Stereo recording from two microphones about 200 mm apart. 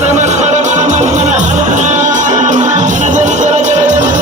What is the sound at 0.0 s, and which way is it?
Music, 35° right (ahead or behind).